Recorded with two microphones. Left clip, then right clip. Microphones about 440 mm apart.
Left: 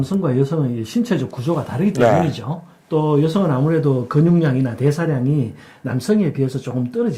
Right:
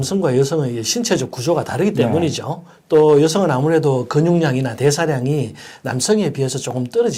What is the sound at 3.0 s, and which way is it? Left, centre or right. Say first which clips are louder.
Speech: right 6 dB; right.